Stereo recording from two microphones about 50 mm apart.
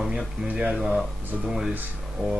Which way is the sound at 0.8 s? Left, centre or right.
Centre.